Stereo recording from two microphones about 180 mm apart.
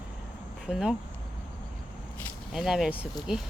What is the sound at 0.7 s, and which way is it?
Speech, 5° right (ahead or behind).